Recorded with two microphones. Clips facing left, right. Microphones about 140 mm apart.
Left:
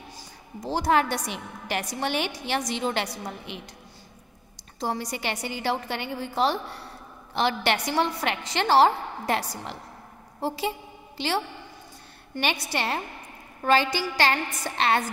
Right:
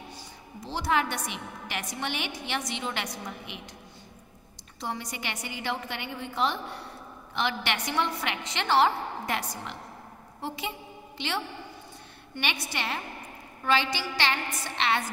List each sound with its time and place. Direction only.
0.6 s a woman's voice: 40° left (ahead or behind)
4.7 s a woman's voice: 35° left (ahead or behind)